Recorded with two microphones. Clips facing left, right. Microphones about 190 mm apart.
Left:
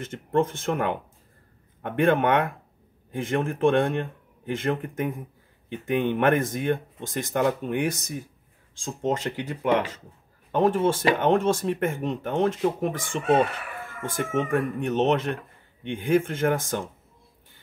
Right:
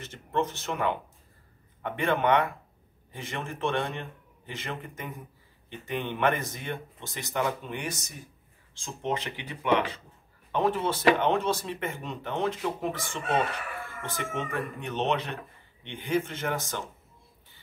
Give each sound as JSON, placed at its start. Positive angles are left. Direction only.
{"t": 0.0, "sound": "speech", "side_deg": 50}
{"t": 9.6, "sound": "speech", "side_deg": 40}